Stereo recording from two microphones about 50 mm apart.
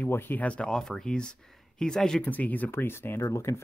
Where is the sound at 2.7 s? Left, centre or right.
Left.